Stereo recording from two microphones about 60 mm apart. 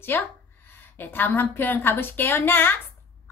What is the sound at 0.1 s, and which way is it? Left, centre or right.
A woman's voice, left.